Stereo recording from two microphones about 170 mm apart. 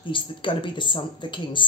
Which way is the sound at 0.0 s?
30° left (ahead or behind).